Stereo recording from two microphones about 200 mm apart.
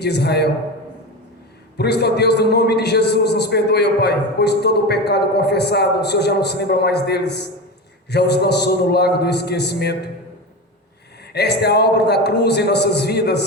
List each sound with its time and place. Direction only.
0.0 s a man's voice: 55° left (ahead or behind)
1.8 s a man's voice: 55° left (ahead or behind)
11.3 s a man's voice: 55° left (ahead or behind)